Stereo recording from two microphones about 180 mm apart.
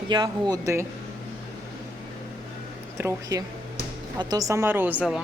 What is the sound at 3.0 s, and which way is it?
Speech, 15° right (ahead or behind).